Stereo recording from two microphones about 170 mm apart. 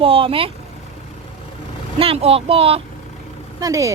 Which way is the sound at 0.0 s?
35° right (ahead or behind).